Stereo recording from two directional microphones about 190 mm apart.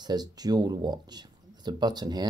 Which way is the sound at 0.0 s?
20° right (ahead or behind).